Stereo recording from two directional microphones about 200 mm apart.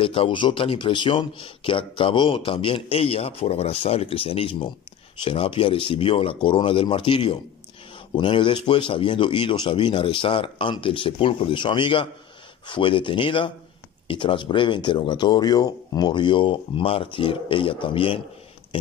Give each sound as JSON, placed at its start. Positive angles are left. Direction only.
{"t": 0.0, "sound": "speech", "side_deg": 25}